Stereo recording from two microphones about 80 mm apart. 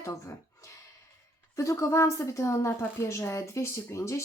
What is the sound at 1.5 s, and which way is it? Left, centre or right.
Speech, left.